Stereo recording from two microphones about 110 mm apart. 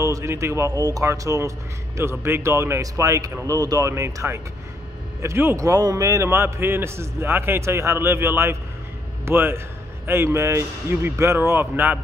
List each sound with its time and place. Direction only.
0.0 s a man's voice: 30° right (ahead or behind)